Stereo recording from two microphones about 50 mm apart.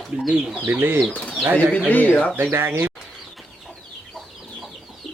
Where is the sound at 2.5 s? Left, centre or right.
Right.